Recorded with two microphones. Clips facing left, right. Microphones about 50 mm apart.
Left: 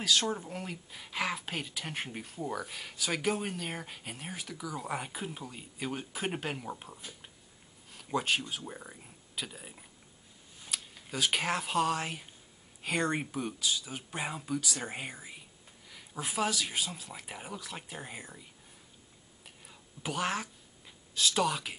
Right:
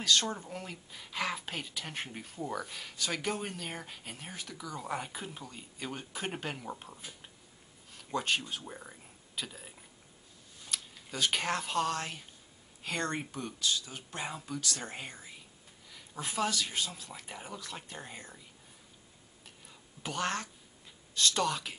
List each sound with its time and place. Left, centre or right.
0.0 s speech: centre
19.4 s whispering: centre
21.1 s speech: centre